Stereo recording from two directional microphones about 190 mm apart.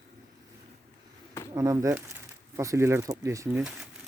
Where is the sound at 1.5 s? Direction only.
15° right (ahead or behind).